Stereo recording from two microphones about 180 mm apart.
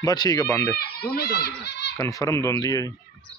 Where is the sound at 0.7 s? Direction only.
60° left (ahead or behind).